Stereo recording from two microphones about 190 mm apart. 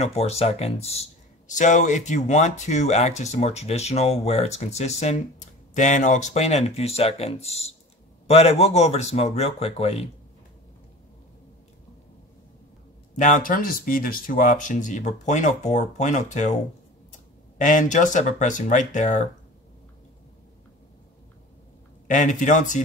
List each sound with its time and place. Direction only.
0.0 s speech: 35° left (ahead or behind)
13.1 s speech: 40° left (ahead or behind)
17.6 s speech: 40° left (ahead or behind)
22.0 s speech: 40° left (ahead or behind)